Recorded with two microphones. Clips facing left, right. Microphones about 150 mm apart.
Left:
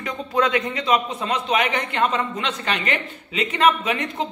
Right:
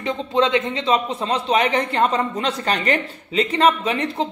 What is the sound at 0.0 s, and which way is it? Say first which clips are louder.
A man's voice: right 3 dB; 25° right (ahead or behind).